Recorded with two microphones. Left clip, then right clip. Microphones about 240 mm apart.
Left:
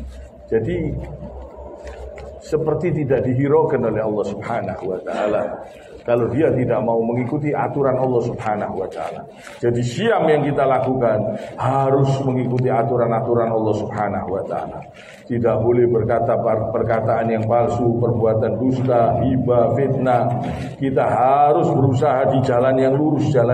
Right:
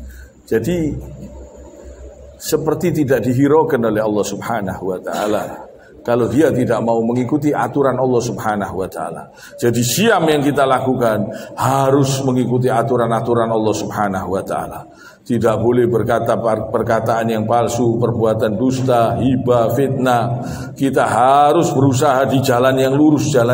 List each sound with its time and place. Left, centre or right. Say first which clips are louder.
0.5 s a man's voice: right 2 dB; right
2.6 s a man's voice: right 3 dB; right
6.0 s a man's voice: right 3 dB; right